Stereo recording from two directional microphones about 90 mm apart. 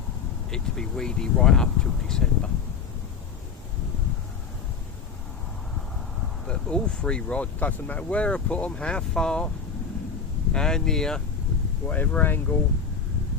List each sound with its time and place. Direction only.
0.5 s speech: 5° left (ahead or behind)
6.5 s speech: 10° left (ahead or behind)
10.5 s speech: 5° left (ahead or behind)
11.9 s speech: 20° left (ahead or behind)